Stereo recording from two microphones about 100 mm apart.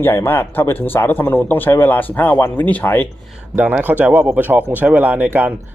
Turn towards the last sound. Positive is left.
turn(degrees=-15)  # may be behind; listen again after turning